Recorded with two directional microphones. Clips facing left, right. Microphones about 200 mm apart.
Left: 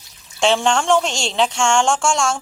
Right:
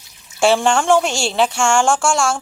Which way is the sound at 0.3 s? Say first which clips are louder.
Right 2 dB; 5° right (ahead or behind).